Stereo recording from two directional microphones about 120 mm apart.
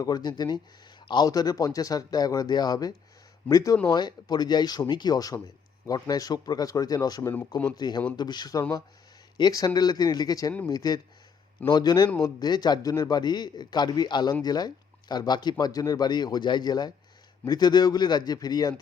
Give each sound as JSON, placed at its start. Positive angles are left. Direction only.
{"t": 0.0, "sound": "speech", "side_deg": 35}